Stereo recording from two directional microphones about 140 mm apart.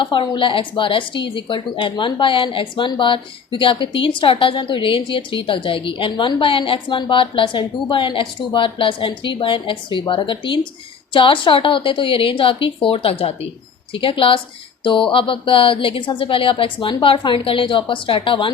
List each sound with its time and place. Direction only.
0.0 s a woman's voice: 35° left (ahead or behind)